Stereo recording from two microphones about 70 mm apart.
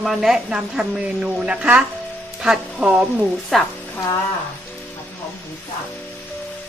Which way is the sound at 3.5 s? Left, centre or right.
Centre.